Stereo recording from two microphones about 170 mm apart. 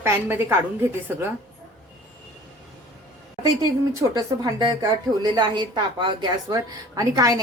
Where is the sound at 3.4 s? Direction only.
20° right (ahead or behind).